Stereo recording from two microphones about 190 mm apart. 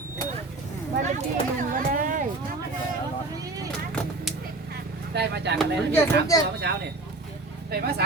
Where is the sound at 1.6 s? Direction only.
45° right (ahead or behind).